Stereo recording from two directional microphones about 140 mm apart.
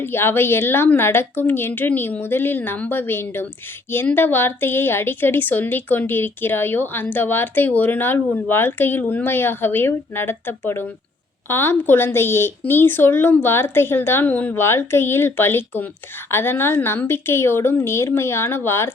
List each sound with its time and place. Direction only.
0.0 s a woman's voice: 15° left (ahead or behind)